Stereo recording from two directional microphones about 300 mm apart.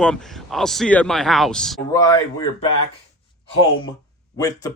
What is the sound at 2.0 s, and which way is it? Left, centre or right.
Speech, centre.